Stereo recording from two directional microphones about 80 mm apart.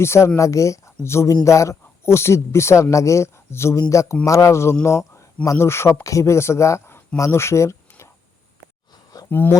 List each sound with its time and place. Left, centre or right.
0.0 s speech: left